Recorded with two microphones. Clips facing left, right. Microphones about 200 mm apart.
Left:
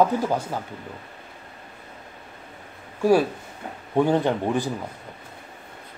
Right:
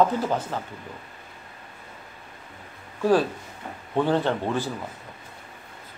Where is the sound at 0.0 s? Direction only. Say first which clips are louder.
Left 1 dB; 10° left (ahead or behind).